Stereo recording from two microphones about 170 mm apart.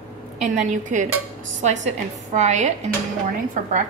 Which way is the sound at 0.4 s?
45° right (ahead or behind).